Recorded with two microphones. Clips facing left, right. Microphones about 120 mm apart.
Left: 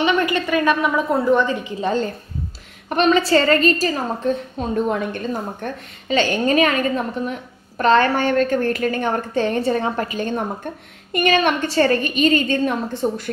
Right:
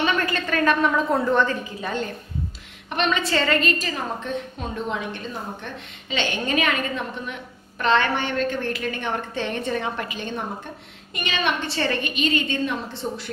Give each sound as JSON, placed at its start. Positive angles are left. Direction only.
{"t": 0.0, "sound": "a woman's voice", "side_deg": 15}
{"t": 1.8, "sound": "a woman's voice", "side_deg": 30}